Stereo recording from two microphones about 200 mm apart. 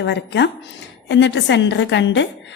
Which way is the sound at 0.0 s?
60° left (ahead or behind).